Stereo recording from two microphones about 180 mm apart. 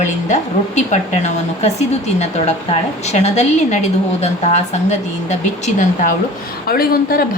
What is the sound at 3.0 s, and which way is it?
Speech, 40° left (ahead or behind).